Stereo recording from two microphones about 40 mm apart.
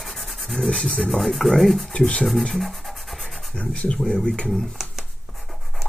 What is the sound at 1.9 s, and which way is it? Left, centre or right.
Speech, left.